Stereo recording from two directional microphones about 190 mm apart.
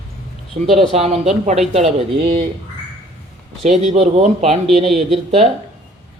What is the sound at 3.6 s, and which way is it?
Speech, 35° right (ahead or behind).